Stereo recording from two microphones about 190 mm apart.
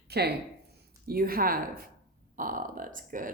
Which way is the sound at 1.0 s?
50° right (ahead or behind).